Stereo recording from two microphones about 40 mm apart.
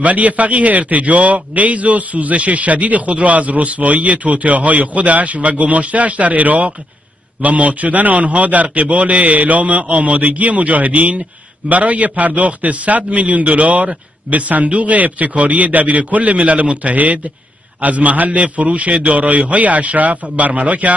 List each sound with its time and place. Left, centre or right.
0.0 s a man's voice: right